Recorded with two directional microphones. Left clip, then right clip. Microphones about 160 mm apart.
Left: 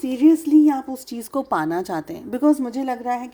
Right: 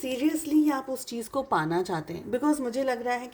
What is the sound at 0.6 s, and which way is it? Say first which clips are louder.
A woman's voice: left 7 dB; 35° left (ahead or behind).